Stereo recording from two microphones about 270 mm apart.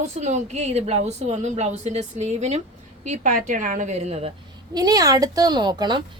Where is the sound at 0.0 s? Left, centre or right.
Right.